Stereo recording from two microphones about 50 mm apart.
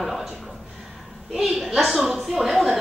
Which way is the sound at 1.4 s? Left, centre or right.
Centre.